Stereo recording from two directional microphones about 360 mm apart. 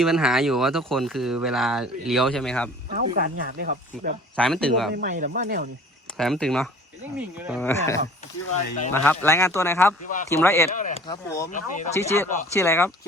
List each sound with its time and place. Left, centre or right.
0.0 s speech: centre
2.9 s speech: right
4.4 s speech: centre
4.9 s speech: right
6.1 s speech: centre
7.7 s speech: centre
10.0 s speech: left
10.2 s speech: centre
10.8 s speech: centre
11.9 s speech: centre